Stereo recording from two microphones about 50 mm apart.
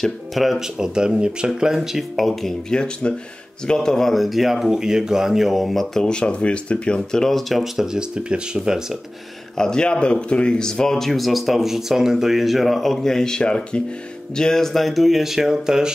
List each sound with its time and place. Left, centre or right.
0.0 s speech: centre
2.7 s speech: centre
6.0 s speech: centre
9.6 s speech: centre